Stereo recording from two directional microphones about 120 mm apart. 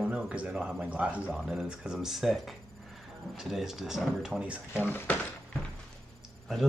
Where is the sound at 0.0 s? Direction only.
10° right (ahead or behind).